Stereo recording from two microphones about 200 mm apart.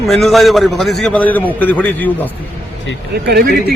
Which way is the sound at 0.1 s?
Centre (ahead or behind).